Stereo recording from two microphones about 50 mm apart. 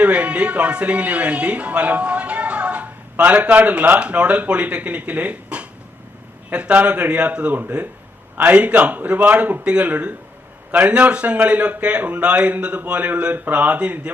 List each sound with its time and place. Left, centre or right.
0.0 s speech: right